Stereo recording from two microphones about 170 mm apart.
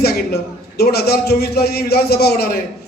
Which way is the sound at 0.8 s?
70° left (ahead or behind).